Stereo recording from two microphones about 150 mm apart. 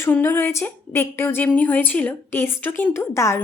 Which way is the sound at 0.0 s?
15° left (ahead or behind).